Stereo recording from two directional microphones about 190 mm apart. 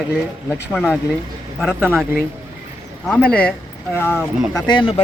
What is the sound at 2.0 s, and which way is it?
Speech, 5° right (ahead or behind).